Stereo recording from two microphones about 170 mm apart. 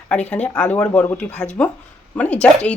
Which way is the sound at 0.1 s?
10° left (ahead or behind).